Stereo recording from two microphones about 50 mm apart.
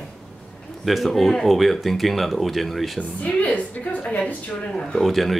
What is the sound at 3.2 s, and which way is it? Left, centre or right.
A woman's voice, left.